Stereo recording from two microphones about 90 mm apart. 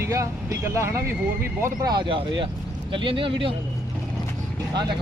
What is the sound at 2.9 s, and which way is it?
Speech, 75° right (ahead or behind).